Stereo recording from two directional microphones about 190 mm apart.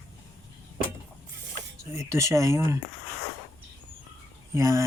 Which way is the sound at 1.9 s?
15° right (ahead or behind).